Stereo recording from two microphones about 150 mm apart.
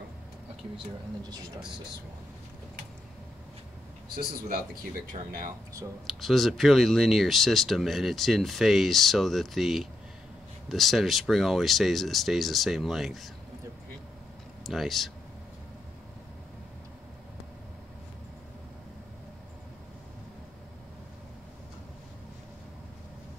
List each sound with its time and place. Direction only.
4.1 s speech: 80° right
5.2 s speech: 40° right (ahead or behind)
6.2 s speech: centre (ahead or behind)
14.6 s speech: centre (ahead or behind)